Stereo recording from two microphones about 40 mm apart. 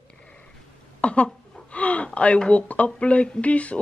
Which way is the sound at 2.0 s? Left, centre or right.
Left.